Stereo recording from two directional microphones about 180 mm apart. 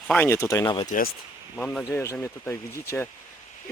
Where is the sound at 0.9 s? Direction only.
50° left (ahead or behind).